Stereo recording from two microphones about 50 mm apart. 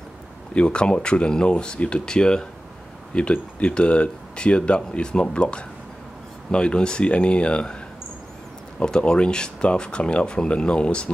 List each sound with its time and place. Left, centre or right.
0.6 s speech: centre
8.7 s speech: centre